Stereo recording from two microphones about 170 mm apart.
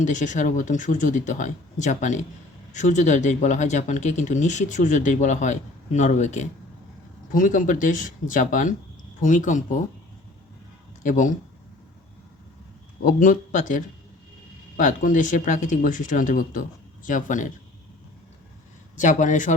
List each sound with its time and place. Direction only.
0.0 s speech: 45° left (ahead or behind)
11.0 s speech: 50° left (ahead or behind)
13.1 s speech: 50° left (ahead or behind)
18.9 s speech: 45° left (ahead or behind)